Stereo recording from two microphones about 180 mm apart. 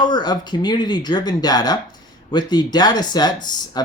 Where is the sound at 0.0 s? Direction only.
25° left (ahead or behind).